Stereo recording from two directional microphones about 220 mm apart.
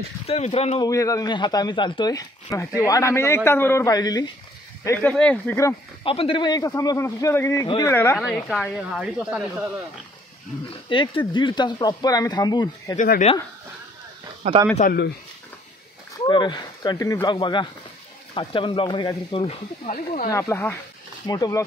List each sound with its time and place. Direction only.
0.3 s speech: 25° left (ahead or behind)
0.8 s a man's voice: 15° left (ahead or behind)
6.0 s a man's voice: 25° left (ahead or behind)
8.2 s speech: centre (ahead or behind)
10.9 s speech: 20° left (ahead or behind)
12.9 s speech: 35° left (ahead or behind)
14.4 s speech: 30° right (ahead or behind)
14.8 s speech: 40° left (ahead or behind)
16.3 s speech: 20° left (ahead or behind)
20.2 s a man's voice: 15° left (ahead or behind)